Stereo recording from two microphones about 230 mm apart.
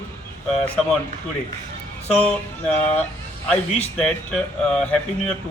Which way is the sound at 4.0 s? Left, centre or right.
Centre.